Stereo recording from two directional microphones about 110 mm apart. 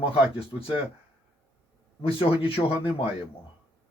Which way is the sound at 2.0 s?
55° left (ahead or behind).